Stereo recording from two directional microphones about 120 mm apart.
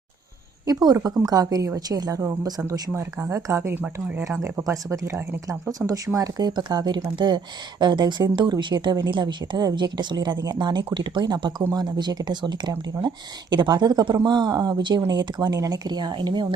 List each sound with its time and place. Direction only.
0.7 s a woman's voice: 30° right (ahead or behind)